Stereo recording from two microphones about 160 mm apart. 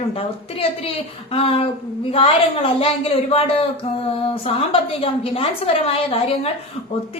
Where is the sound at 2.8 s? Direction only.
35° left (ahead or behind).